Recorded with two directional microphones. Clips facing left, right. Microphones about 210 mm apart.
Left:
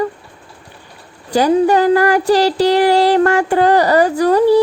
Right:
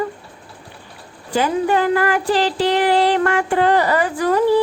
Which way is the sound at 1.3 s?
40° left (ahead or behind).